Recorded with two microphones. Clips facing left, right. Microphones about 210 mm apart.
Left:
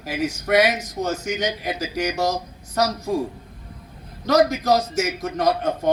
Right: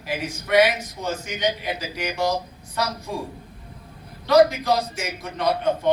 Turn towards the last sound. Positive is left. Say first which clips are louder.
# left 1 dB
turn(degrees=45)  # may be behind; listen again after turning